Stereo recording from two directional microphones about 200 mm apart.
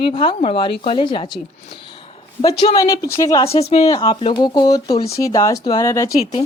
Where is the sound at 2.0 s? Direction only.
25° left (ahead or behind).